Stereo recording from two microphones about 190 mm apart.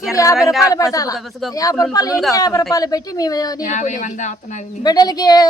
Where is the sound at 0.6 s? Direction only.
20° left (ahead or behind).